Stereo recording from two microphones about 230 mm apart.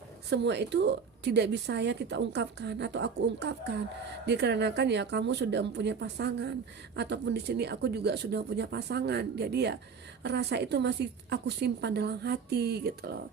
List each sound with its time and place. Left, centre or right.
0.3 s a woman's voice: right